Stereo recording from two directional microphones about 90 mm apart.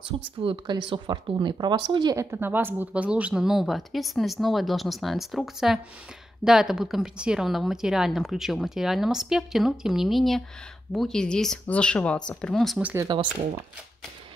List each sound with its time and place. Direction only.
0.4 s speech: 75° right (ahead or behind); by 2.1 s 55° right (ahead or behind)
2.1 s speech: 25° right (ahead or behind); by 12.7 s 5° left (ahead or behind)
13.1 s speech: 55° right (ahead or behind)